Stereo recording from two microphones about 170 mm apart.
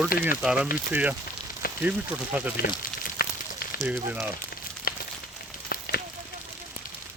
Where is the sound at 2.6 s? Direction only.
65° left (ahead or behind).